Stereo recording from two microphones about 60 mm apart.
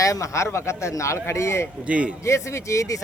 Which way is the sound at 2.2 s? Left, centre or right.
Left.